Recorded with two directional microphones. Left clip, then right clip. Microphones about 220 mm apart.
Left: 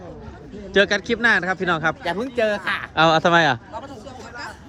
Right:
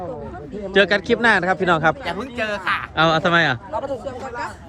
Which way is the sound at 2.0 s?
50° left (ahead or behind).